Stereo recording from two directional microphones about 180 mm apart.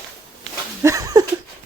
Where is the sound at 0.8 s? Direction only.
20° right (ahead or behind).